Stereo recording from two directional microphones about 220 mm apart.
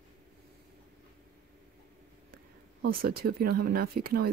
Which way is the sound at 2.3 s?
45° right (ahead or behind).